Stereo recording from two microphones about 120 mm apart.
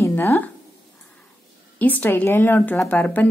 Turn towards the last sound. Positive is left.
turn(degrees=15)  # may be behind; listen again after turning